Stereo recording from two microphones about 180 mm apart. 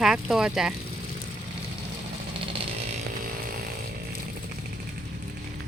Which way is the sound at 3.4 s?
55° right (ahead or behind).